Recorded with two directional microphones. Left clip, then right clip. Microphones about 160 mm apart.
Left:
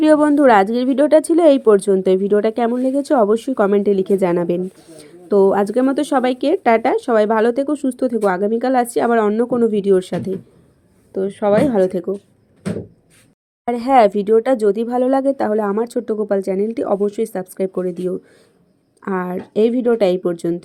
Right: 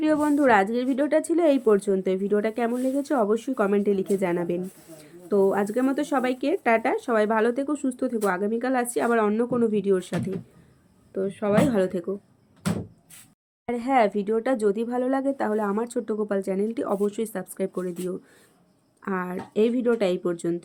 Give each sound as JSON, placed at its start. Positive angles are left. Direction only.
{"t": 0.0, "sound": "speech", "side_deg": 35}
{"t": 13.7, "sound": "speech", "side_deg": 30}